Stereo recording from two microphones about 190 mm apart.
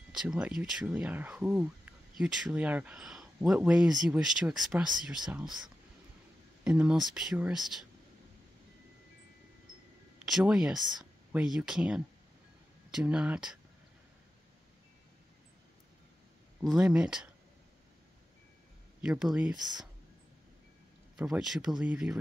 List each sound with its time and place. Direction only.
0.1 s speech: 5° right (ahead or behind)
6.6 s speech: 5° right (ahead or behind)
10.1 s speech: 5° right (ahead or behind)
16.6 s speech: 5° right (ahead or behind)
18.9 s speech: 5° right (ahead or behind)
19.5 s speech: 20° right (ahead or behind)
21.2 s speech: 5° right (ahead or behind)